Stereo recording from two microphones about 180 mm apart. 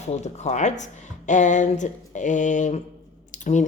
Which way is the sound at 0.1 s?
40° left (ahead or behind).